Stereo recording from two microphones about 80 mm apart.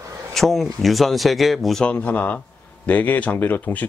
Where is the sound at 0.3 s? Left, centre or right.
Centre.